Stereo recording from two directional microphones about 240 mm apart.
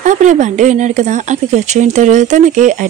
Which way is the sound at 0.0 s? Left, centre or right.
Right.